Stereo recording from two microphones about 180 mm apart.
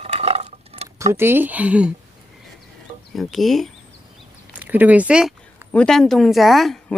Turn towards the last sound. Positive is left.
turn(degrees=0)  # may be behind; listen again after turning